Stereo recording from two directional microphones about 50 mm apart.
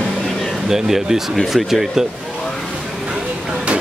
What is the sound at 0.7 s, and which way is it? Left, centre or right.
Speech, centre.